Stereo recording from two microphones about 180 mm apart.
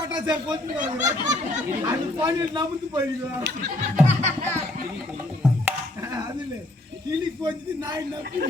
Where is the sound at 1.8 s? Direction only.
25° right (ahead or behind).